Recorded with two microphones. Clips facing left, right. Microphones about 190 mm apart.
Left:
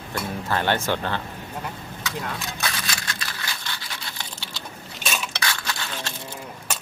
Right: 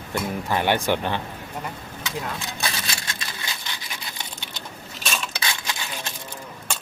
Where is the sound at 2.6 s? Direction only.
25° right (ahead or behind).